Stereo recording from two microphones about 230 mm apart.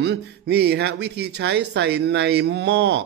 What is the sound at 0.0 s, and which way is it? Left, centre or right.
Speech, right.